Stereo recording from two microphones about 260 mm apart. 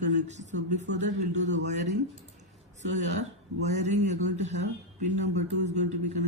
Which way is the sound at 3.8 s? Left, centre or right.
Right.